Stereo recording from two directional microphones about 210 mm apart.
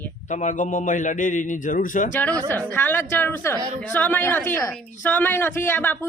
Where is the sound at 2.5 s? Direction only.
10° left (ahead or behind).